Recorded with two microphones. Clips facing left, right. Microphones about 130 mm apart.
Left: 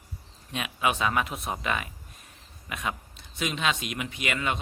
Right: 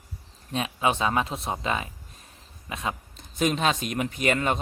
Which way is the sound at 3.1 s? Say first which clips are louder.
Right 7 dB; 45° right (ahead or behind).